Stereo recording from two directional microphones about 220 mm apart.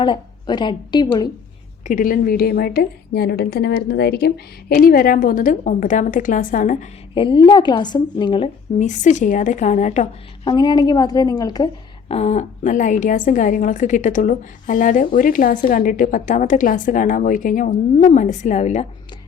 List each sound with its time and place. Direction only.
0.0 s a woman's voice: 20° left (ahead or behind)
1.9 s a woman's voice: 40° left (ahead or behind)
7.1 s a woman's voice: 25° left (ahead or behind)